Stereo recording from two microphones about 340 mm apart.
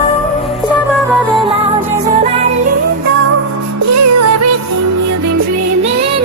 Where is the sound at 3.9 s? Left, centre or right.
Right.